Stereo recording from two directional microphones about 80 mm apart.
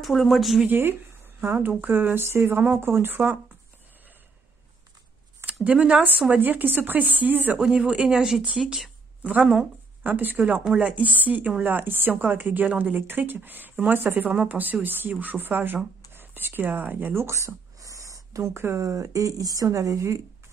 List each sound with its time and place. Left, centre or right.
0.0 s speech: centre
0.7 s a woman's voice: right
5.4 s a woman's voice: centre; by 20.2 s right